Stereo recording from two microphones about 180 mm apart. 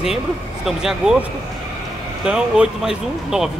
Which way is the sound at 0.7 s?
5° right (ahead or behind).